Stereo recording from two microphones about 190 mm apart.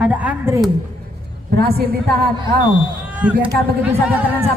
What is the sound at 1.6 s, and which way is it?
Music, 55° right (ahead or behind).